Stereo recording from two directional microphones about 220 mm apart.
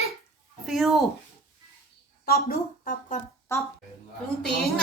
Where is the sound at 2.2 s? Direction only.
40° left (ahead or behind).